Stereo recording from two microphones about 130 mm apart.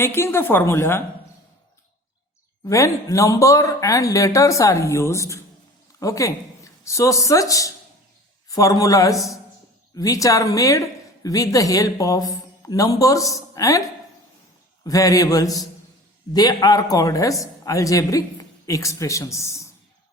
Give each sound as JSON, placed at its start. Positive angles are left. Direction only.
{"t": 0.0, "sound": "speech", "side_deg": 20}
{"t": 2.6, "sound": "speech", "side_deg": 25}
{"t": 9.1, "sound": "speech", "side_deg": 0}
{"t": 9.9, "sound": "a woman's voice", "side_deg": 25}
{"t": 14.8, "sound": "speech", "side_deg": 25}